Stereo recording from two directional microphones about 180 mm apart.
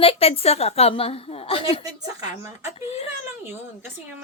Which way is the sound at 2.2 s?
15° right (ahead or behind).